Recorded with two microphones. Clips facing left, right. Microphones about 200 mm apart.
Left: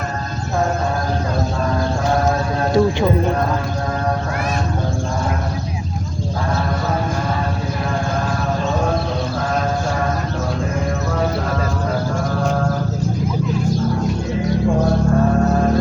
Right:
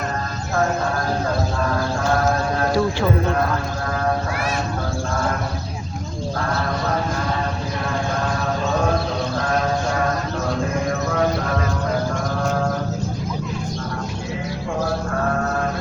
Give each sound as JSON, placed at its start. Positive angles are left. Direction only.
{"t": 2.7, "sound": "speech", "side_deg": 20}